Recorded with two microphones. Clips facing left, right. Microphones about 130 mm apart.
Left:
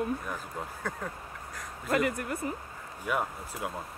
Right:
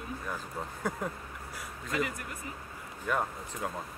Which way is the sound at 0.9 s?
10° right (ahead or behind).